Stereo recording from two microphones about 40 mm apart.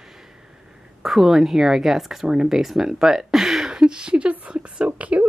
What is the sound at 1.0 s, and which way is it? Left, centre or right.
Speech, centre.